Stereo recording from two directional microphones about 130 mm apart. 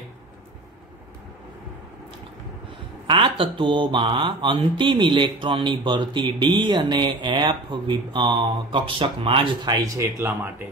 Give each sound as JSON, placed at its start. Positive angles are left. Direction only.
{"t": 3.1, "sound": "mantra", "side_deg": -40}
{"t": 9.9, "sound": "speech", "side_deg": -20}